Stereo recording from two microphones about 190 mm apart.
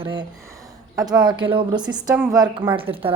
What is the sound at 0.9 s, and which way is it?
Speech, 20° right (ahead or behind).